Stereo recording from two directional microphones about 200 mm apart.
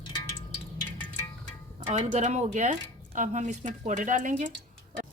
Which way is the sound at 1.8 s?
35° right (ahead or behind).